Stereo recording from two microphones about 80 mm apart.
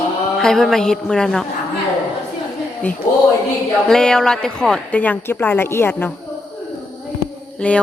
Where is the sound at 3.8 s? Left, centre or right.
Centre.